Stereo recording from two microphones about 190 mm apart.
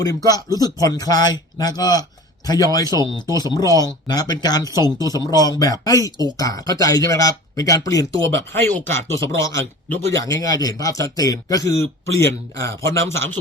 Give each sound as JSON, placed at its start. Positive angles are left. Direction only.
{"t": 0.0, "sound": "speech", "side_deg": 20}